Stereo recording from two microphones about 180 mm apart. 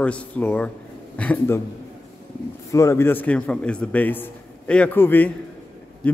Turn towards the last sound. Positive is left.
turn(degrees=5)  # may be behind; listen again after turning